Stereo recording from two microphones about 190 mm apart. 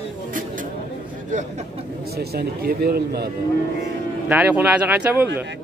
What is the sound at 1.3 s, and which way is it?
Speech, 40° right (ahead or behind).